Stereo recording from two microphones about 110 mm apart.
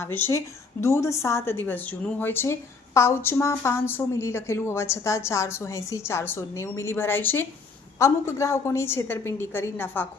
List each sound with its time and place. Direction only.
0.0 s a woman's voice: 20° left (ahead or behind)